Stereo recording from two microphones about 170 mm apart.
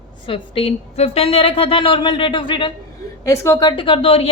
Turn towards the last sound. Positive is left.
turn(degrees=35)  # may be behind; listen again after turning